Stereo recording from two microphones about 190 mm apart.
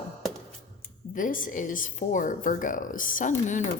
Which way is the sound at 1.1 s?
45° left (ahead or behind).